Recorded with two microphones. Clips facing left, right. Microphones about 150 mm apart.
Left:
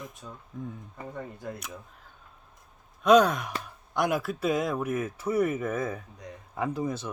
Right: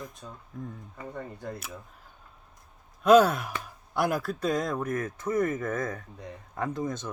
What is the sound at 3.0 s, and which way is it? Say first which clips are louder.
Speech: right 1 dB; 5° right (ahead or behind).